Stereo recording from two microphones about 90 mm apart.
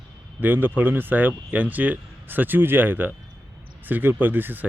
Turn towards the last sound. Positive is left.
turn(degrees=-20)  # may be behind; listen again after turning